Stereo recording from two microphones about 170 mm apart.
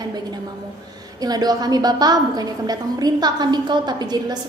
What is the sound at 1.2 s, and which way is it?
A woman's voice, 25° right (ahead or behind).